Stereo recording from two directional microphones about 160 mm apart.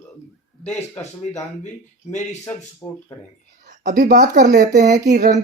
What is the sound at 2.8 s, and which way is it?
Speech, 20° left (ahead or behind).